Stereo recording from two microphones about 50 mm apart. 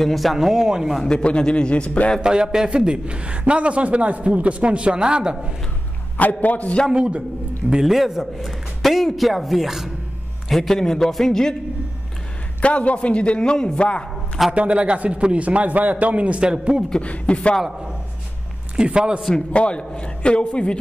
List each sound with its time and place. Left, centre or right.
0.0 s a man's voice: centre
1.0 s a man's voice: centre
2.2 s a man's voice: centre
6.1 s a man's voice: left
6.9 s a man's voice: right
7.8 s a man's voice: centre
12.6 s a man's voice: left
14.5 s a man's voice: right
17.0 s a man's voice: left
18.9 s a man's voice: centre
19.5 s a man's voice: left